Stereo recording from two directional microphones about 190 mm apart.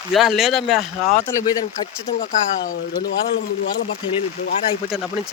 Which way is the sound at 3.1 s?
70° left (ahead or behind).